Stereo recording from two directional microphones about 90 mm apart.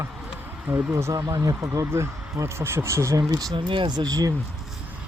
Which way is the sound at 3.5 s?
65° right (ahead or behind).